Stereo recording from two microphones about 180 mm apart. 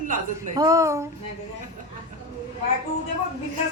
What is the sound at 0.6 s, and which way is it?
Speech, 20° right (ahead or behind).